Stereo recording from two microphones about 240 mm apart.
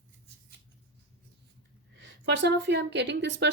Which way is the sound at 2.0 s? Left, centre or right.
Right.